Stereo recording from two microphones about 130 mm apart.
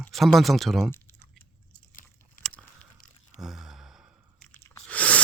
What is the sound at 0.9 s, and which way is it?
Chewing, 15° left (ahead or behind).